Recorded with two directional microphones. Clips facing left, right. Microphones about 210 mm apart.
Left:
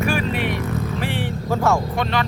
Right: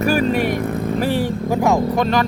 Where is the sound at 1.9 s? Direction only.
40° right (ahead or behind).